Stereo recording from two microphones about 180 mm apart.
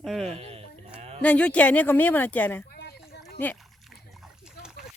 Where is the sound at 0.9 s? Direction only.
35° right (ahead or behind).